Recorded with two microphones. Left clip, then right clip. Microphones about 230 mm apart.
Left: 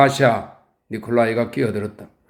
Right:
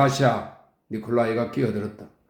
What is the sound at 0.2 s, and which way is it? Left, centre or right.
Speech, left.